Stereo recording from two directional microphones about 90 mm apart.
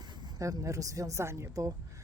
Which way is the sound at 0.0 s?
55° right (ahead or behind).